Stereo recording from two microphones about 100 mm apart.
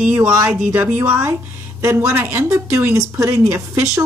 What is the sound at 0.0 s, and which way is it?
A woman's voice, 15° right (ahead or behind).